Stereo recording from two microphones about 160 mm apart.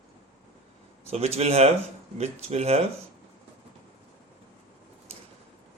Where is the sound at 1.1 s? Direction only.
40° right (ahead or behind).